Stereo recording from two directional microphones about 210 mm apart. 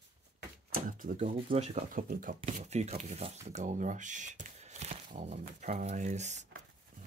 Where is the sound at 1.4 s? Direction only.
35° right (ahead or behind).